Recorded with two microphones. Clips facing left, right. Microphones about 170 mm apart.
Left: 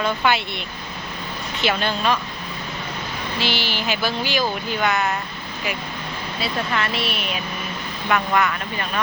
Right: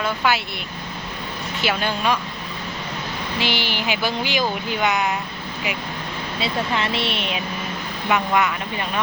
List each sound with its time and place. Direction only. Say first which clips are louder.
0.0 s speech: left 1 dB; 5° right (ahead or behind)
1.6 s speech: left 1 dB; 10° right (ahead or behind)
3.3 s speech: right 1 dB; 15° right (ahead or behind)
6.4 s speech: right 1 dB; 25° right (ahead or behind)